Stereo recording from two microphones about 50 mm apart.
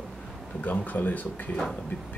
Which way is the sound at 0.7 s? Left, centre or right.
Left.